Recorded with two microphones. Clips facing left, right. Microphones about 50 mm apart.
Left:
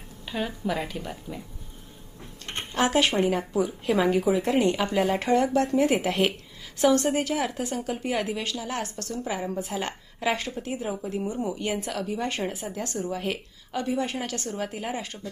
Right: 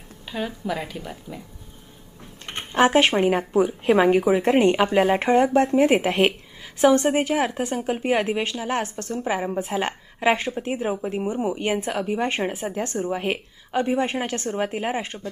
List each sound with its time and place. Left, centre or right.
0.3 s a woman's voice: centre
2.7 s a woman's voice: right